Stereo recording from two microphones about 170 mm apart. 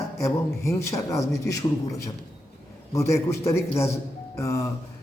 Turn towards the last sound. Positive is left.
turn(degrees=15)  # may be behind; listen again after turning